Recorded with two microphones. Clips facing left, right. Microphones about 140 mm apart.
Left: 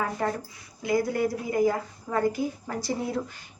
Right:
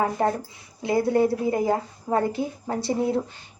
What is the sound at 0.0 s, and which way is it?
A woman's voice, 30° right (ahead or behind).